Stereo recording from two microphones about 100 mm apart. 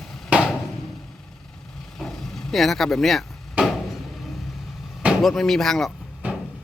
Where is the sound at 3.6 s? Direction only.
15° right (ahead or behind).